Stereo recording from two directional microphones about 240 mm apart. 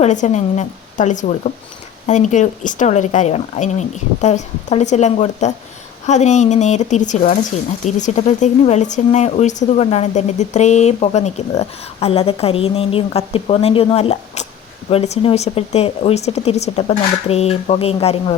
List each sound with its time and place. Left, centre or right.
0.0 s speech: left